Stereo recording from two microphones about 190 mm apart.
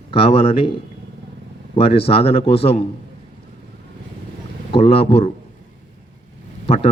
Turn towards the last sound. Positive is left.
turn(degrees=30)  # may be behind; listen again after turning